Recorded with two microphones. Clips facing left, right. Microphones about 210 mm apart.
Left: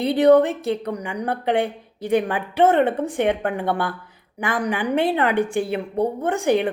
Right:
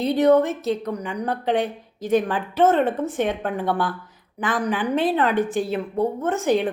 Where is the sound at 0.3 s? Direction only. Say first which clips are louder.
Left 2 dB; 15° left (ahead or behind).